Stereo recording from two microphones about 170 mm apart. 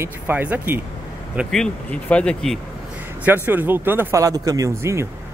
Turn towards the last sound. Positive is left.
turn(degrees=-20)  # may be behind; listen again after turning